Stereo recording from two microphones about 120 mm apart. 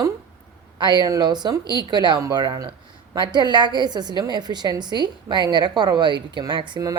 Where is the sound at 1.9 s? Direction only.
35° right (ahead or behind).